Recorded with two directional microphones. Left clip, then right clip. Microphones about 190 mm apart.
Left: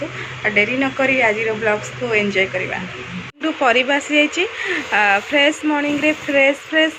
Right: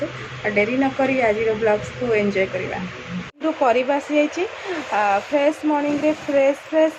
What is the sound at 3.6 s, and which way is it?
Speech, centre (ahead or behind).